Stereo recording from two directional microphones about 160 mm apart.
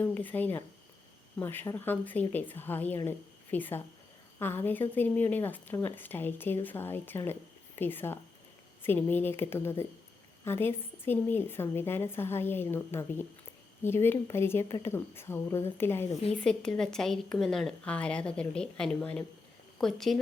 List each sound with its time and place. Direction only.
0.0 s a woman's voice: 10° left (ahead or behind)